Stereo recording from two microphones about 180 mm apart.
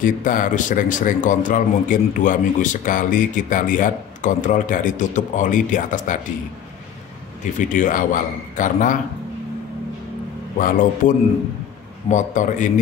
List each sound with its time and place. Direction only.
0.0 s a man's voice: 50° left (ahead or behind)
7.5 s a man's voice: 45° left (ahead or behind)
10.6 s a man's voice: 45° left (ahead or behind)